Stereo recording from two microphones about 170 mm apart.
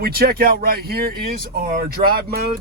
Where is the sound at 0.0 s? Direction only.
60° right (ahead or behind).